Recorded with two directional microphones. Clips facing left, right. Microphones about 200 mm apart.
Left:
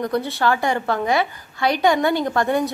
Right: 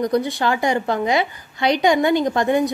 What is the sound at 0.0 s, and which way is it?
A woman's voice, 15° right (ahead or behind).